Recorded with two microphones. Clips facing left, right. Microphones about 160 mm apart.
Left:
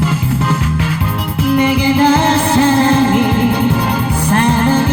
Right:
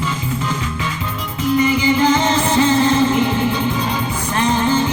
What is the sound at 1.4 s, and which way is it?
Music, 65° left (ahead or behind).